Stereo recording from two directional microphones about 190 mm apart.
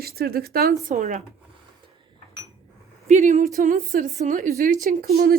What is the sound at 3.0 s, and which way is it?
A woman's voice, 35° right (ahead or behind).